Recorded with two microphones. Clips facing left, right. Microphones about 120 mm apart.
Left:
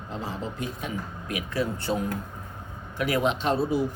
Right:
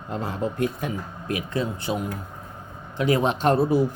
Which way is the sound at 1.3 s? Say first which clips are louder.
Right 2 dB; 25° right (ahead or behind).